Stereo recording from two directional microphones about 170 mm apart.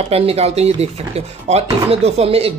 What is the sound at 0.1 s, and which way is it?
Speech, 35° right (ahead or behind).